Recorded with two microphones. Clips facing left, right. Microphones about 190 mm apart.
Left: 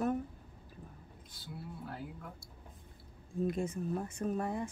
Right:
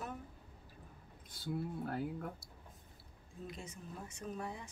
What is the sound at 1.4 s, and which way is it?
Speech, 50° right (ahead or behind).